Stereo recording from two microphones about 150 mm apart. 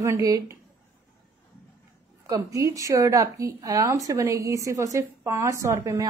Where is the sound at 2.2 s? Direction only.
25° right (ahead or behind).